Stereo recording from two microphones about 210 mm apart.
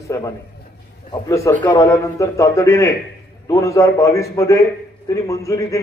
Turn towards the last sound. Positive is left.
turn(degrees=15)  # may be behind; listen again after turning